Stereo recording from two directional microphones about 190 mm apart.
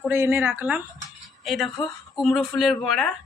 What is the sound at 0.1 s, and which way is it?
Speech, 10° right (ahead or behind).